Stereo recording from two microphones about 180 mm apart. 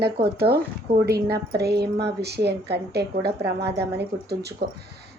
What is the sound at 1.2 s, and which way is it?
A woman's voice, 60° right (ahead or behind).